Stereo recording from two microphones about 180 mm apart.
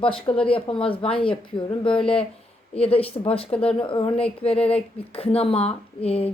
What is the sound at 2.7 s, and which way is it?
A woman's voice, 35° left (ahead or behind).